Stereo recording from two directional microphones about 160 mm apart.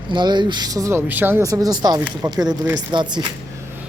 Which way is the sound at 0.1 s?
30° right (ahead or behind).